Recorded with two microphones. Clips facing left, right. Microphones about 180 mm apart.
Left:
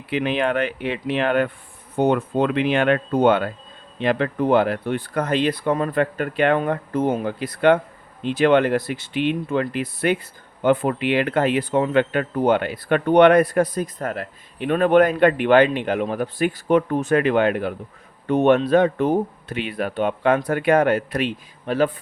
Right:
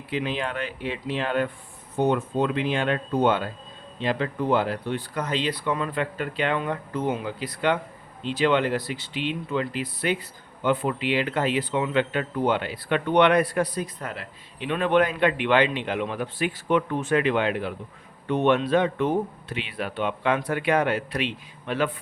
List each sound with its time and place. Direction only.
0.1 s speech: 65° left (ahead or behind); by 21.8 s 40° left (ahead or behind)